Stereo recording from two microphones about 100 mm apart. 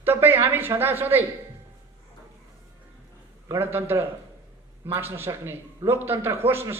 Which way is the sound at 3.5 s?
20° right (ahead or behind).